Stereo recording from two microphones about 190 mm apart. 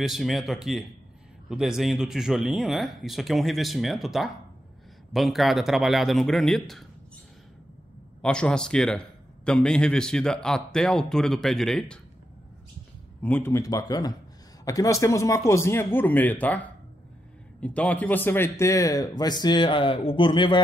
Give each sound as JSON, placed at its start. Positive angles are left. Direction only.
{"t": 0.0, "sound": "a man's voice", "side_deg": 0}
{"t": 8.2, "sound": "a man's voice", "side_deg": 5}
{"t": 13.2, "sound": "speech", "side_deg": 10}